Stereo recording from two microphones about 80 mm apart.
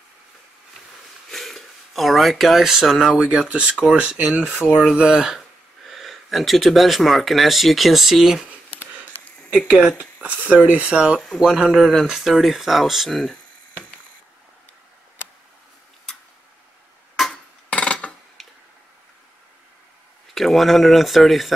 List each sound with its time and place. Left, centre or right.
1.3 s speech: centre
9.6 s speech: centre
17.2 s hammer: centre
17.6 s a sound: centre
18.4 s tick-tock: centre
20.3 s speech: centre